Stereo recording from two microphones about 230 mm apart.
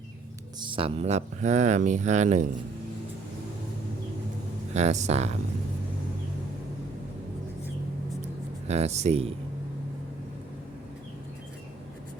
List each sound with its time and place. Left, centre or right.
0.6 s speech: right
4.7 s speech: right
8.6 s speech: right